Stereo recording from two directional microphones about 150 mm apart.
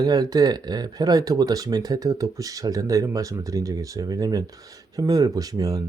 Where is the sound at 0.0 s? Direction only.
25° right (ahead or behind).